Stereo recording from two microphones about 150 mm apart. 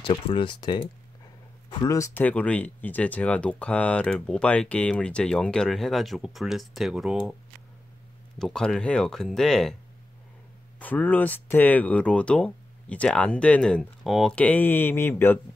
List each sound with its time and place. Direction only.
0.0 s speech: 35° left (ahead or behind); by 7.3 s 5° right (ahead or behind)
8.4 s speech: 5° left (ahead or behind)
10.8 s speech: 10° left (ahead or behind)